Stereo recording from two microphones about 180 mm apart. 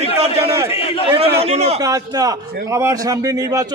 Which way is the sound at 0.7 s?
30° left (ahead or behind).